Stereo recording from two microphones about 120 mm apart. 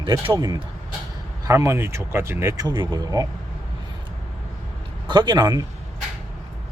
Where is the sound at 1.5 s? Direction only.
25° right (ahead or behind).